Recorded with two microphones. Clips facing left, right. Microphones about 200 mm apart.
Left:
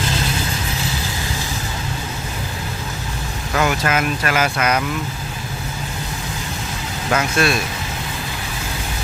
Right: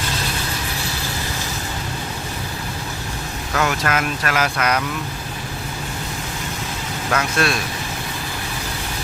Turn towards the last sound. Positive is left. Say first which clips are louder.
# left 2 dB
turn(degrees=5)  # may be behind; listen again after turning